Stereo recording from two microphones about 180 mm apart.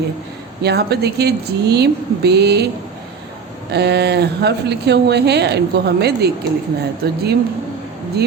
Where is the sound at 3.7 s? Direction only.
65° right (ahead or behind).